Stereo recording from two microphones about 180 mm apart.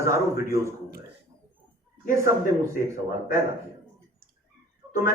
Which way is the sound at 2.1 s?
15° right (ahead or behind).